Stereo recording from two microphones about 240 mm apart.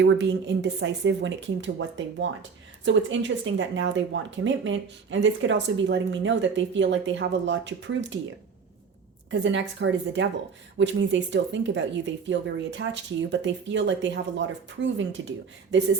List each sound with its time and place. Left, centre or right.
0.0 s a woman's voice: right
9.3 s a woman's voice: right